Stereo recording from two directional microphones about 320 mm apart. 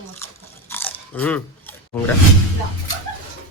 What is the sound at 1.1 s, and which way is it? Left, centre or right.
Speech, centre.